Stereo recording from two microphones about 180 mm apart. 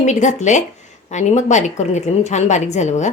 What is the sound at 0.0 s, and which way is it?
Speech, 40° left (ahead or behind).